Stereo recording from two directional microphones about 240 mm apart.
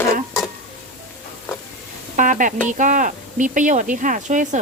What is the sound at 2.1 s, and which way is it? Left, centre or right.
Speech, right.